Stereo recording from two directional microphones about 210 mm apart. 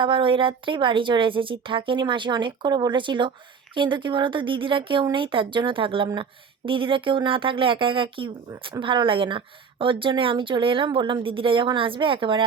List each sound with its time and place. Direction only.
0.0 s speech: 25° right (ahead or behind)